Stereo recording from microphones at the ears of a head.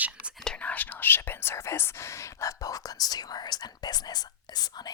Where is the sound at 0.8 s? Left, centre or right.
Left.